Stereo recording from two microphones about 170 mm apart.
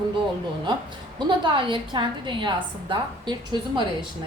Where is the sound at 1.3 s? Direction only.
30° right (ahead or behind).